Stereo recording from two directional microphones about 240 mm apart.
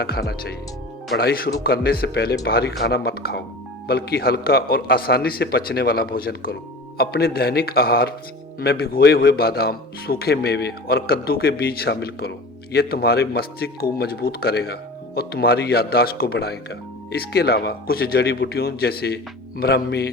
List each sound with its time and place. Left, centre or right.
0.0 s speech: left